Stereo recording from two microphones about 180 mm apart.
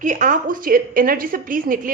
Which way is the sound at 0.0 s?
45° right (ahead or behind).